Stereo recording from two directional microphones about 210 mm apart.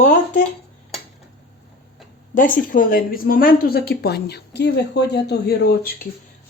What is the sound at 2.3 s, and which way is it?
A woman's voice, 40° left (ahead or behind).